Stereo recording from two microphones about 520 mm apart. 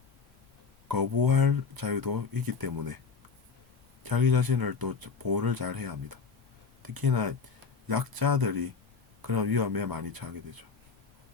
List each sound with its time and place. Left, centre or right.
0.9 s speech: right
4.0 s speech: right